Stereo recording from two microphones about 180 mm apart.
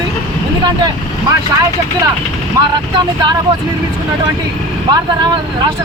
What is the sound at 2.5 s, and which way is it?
Speech, 25° right (ahead or behind).